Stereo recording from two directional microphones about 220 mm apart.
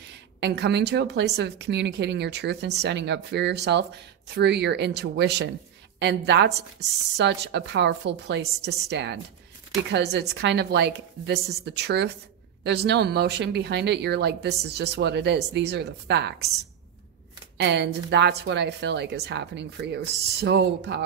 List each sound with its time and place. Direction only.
0.4 s speech: 50° right (ahead or behind)
17.6 s speech: 50° right (ahead or behind)